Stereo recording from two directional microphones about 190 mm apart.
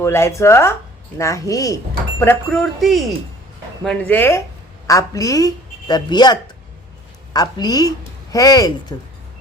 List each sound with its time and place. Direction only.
0.0 s a woman's voice: 15° left (ahead or behind)